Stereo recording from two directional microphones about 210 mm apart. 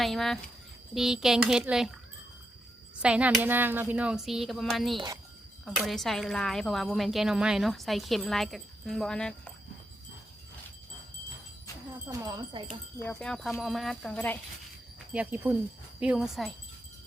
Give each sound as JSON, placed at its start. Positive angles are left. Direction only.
{"t": 0.0, "sound": "speech", "side_deg": 0}
{"t": 3.0, "sound": "speech", "side_deg": -5}
{"t": 4.9, "sound": "speech", "side_deg": -15}
{"t": 5.6, "sound": "speech", "side_deg": 0}
{"t": 12.0, "sound": "speech", "side_deg": -15}
{"t": 13.0, "sound": "speech", "side_deg": 5}
{"t": 15.1, "sound": "speech", "side_deg": -5}